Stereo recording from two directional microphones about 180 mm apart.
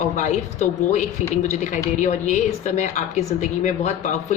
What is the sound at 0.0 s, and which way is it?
A woman's voice, 40° left (ahead or behind).